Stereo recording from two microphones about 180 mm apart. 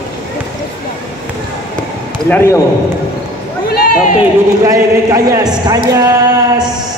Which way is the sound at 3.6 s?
60° left (ahead or behind).